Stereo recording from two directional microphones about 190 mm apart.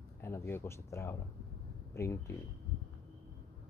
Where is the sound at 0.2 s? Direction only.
15° left (ahead or behind).